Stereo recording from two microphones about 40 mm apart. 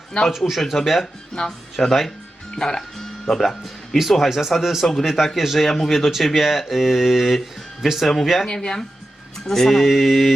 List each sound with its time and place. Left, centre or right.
0.3 s speech: centre
0.6 s speech: centre
1.3 s speech: centre
1.8 s speech: centre
2.6 s speech: centre
4.3 s speech: centre
8.4 s speech: centre
9.5 s speech: centre